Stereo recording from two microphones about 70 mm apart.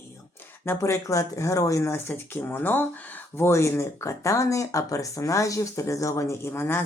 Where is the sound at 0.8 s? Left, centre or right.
Left.